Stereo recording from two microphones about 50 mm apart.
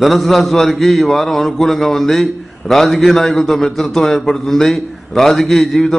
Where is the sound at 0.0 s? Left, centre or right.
Centre.